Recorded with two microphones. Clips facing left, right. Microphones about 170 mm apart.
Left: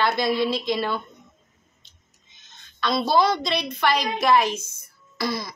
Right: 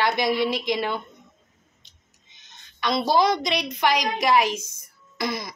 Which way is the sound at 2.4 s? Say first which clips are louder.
Left 2 dB; 15° right (ahead or behind).